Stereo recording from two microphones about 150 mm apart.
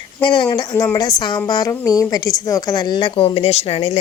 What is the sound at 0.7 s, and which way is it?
A woman's voice, 25° left (ahead or behind).